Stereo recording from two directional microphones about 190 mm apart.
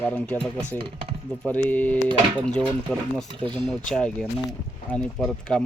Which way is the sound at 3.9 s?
5° left (ahead or behind).